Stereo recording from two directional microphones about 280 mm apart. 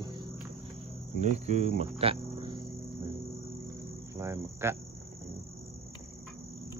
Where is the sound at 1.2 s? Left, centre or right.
Right.